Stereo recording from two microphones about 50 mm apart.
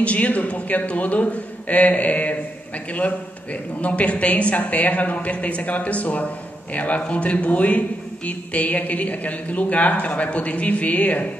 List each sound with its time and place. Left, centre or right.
0.0 s a man's voice: left
3.8 s a man's voice: left